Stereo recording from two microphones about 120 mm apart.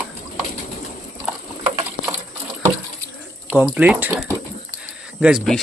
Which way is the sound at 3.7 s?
10° right (ahead or behind).